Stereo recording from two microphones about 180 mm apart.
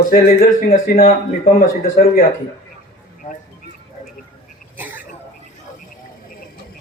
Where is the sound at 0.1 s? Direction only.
55° left (ahead or behind).